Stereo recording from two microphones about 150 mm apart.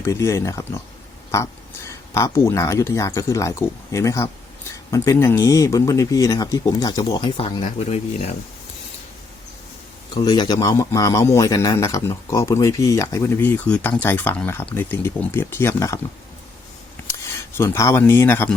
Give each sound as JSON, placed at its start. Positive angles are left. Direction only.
{"t": 0.0, "sound": "a man's voice", "side_deg": 20}
{"t": 7.9, "sound": "speech", "side_deg": 45}
{"t": 10.2, "sound": "a man's voice", "side_deg": 25}
{"t": 17.6, "sound": "speech", "side_deg": 20}